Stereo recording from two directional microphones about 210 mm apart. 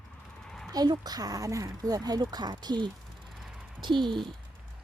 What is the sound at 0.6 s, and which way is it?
Speech, 20° right (ahead or behind).